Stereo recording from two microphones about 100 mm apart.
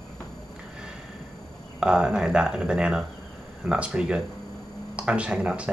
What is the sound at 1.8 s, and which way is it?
Speech, 10° right (ahead or behind).